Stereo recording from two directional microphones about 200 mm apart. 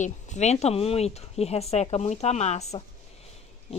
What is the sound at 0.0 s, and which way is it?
A woman's voice, 35° left (ahead or behind).